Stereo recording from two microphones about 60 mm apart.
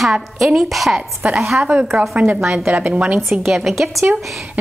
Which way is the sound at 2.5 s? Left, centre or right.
Right.